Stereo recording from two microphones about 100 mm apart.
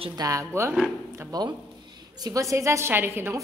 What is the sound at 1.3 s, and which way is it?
A woman's voice, 45° right (ahead or behind).